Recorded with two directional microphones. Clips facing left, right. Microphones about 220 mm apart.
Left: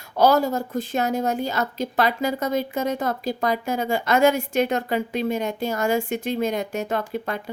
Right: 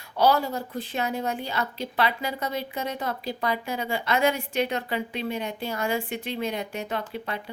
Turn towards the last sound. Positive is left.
turn(degrees=45)  # may be behind; listen again after turning